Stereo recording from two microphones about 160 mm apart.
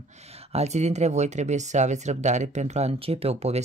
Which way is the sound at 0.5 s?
45° right (ahead or behind).